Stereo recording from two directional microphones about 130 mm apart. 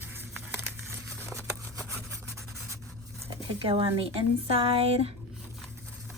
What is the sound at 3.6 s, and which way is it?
A woman's voice, 45° right (ahead or behind).